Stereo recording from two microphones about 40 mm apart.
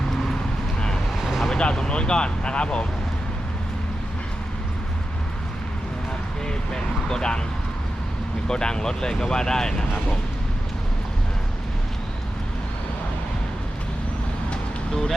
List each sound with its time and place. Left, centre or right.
1.2 s vehicle: centre
1.5 s speech: centre
6.7 s a sound: centre
8.4 s speech: centre